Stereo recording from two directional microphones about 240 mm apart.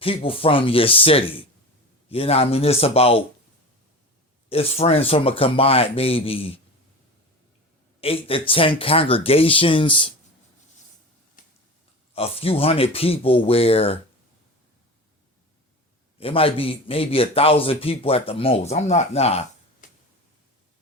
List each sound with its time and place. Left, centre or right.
0.0 s a man's voice: left
4.4 s a man's voice: left
8.0 s a man's voice: left
11.4 s finger snapping: left
12.1 s a man's voice: left
16.1 s a man's voice: left